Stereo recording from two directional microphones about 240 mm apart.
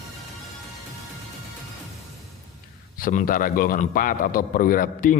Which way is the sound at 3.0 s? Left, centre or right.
Left.